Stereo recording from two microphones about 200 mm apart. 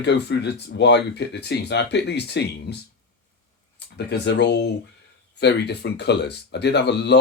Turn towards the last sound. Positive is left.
turn(degrees=55)  # may be behind; listen again after turning